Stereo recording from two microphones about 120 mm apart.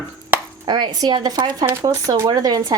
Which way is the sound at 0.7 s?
35° right (ahead or behind).